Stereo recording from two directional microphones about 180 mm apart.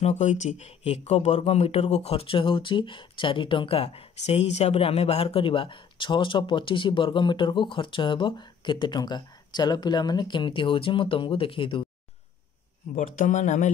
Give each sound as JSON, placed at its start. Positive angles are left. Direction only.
{"t": 0.0, "sound": "speech", "side_deg": 40}
{"t": 12.9, "sound": "speech", "side_deg": 45}